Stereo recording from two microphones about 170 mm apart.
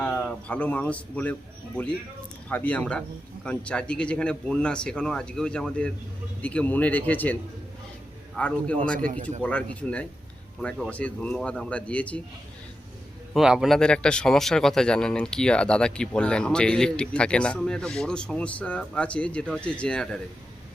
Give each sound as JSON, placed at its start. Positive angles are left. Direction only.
{"t": 0.0, "sound": "a man's voice", "side_deg": 5}
{"t": 8.4, "sound": "speech", "side_deg": 5}
{"t": 9.0, "sound": "a man's voice", "side_deg": -45}
{"t": 9.4, "sound": "speech", "side_deg": 5}
{"t": 13.3, "sound": "speech", "side_deg": -5}